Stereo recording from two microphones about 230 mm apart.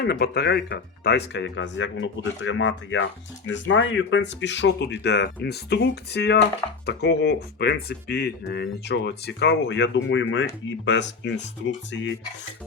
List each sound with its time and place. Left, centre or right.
0.0 s speech: left